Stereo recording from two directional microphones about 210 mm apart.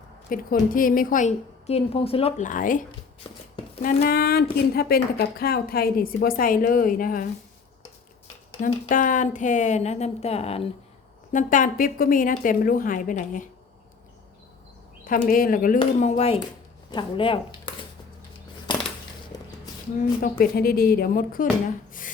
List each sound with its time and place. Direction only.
0.3 s a woman's voice: 40° left (ahead or behind)
3.8 s speech: 45° left (ahead or behind)
8.6 s a woman's voice: 40° left (ahead or behind)
15.0 s a woman's voice: 40° left (ahead or behind); by 17.7 s 25° left (ahead or behind)
20.4 s speech: 45° left (ahead or behind)